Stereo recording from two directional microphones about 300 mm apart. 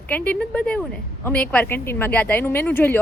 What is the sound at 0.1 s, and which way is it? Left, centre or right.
A woman's voice, centre.